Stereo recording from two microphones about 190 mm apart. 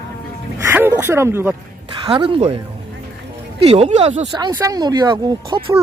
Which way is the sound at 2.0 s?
30° right (ahead or behind).